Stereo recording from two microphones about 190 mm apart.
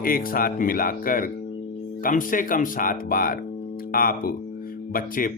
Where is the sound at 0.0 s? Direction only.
50° left (ahead or behind).